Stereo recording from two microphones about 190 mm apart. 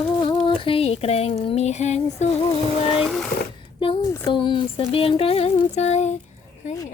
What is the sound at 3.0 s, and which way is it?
Speech, centre (ahead or behind).